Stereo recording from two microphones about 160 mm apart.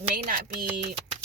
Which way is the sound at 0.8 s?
45° right (ahead or behind).